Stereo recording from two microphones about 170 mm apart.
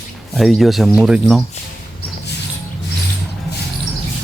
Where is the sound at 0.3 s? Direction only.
Centre (ahead or behind).